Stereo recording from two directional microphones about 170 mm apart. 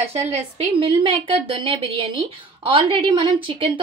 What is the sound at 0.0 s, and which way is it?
Speech, 40° right (ahead or behind).